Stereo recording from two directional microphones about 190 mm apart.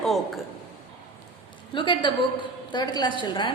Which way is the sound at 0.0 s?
Centre (ahead or behind).